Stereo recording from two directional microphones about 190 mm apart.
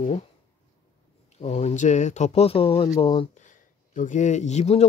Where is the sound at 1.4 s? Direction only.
35° left (ahead or behind).